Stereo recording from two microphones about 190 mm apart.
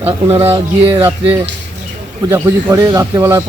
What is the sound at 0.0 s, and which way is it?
Speech, 30° right (ahead or behind).